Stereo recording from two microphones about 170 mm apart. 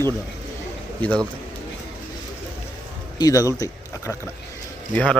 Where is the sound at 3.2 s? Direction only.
20° left (ahead or behind).